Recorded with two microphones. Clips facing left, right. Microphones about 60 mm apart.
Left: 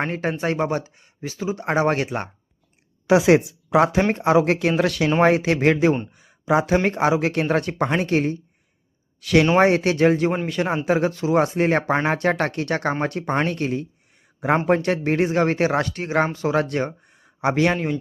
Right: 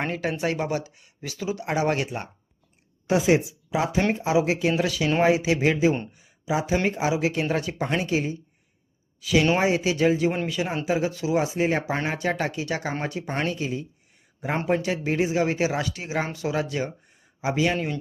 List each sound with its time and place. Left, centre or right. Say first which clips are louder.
0.1 s speech: left 3 dB; left
3.1 s speech: left 5 dB; left
6.1 s a sound: left 7 dB; left
6.8 s speech: left 4 dB; left